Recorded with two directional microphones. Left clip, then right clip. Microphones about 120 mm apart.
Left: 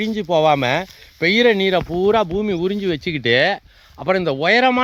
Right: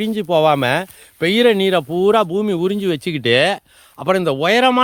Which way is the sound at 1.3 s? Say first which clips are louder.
Right 1 dB; 55° right (ahead or behind).